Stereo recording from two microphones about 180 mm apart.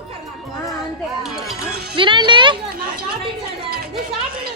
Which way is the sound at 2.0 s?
25° right (ahead or behind).